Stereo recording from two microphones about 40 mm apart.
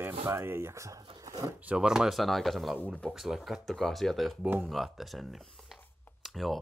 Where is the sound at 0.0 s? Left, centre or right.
Right.